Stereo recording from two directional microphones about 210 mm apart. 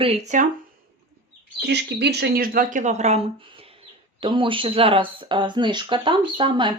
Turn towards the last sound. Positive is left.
turn(degrees=-25)  # may be behind; listen again after turning